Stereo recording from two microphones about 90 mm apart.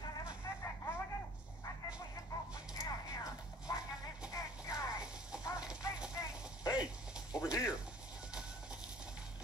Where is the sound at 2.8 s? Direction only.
45° left (ahead or behind).